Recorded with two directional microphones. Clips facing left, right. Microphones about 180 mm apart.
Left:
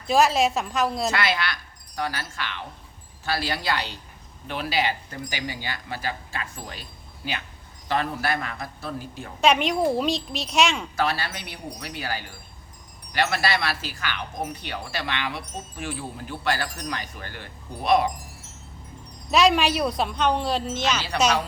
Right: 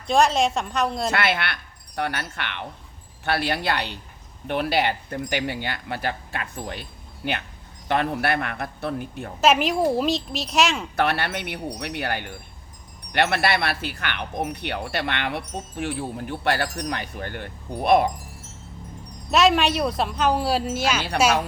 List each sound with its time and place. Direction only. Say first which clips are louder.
0.1 s a woman's voice: right 1 dB; 5° left (ahead or behind)
1.1 s speech: right 1 dB; 60° right (ahead or behind)
9.4 s a woman's voice: right 1 dB; centre (ahead or behind)
10.9 s speech: right 3 dB; 60° right (ahead or behind)
19.3 s a woman's voice: right 1 dB; centre (ahead or behind)